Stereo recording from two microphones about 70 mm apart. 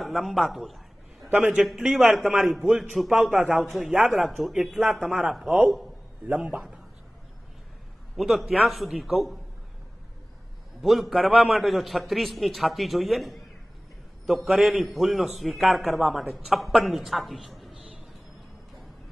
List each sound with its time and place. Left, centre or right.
0.0 s speech: centre
1.3 s speech: centre
6.2 s speech: centre
8.2 s speech: centre
10.8 s a man's voice: centre
17.6 s a sound: centre